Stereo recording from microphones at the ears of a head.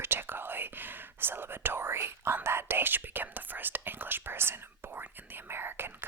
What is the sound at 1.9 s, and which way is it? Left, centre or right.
Speech, right.